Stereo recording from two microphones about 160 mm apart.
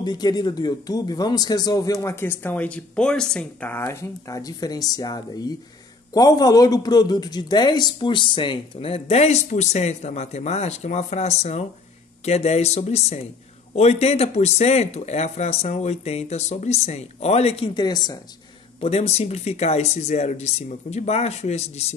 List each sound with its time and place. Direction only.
0.0 s a man's voice: 25° left (ahead or behind)
17.7 s speech: 25° left (ahead or behind)
18.8 s speech: 40° left (ahead or behind)